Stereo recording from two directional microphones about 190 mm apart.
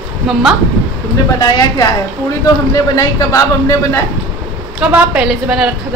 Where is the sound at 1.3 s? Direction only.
20° left (ahead or behind).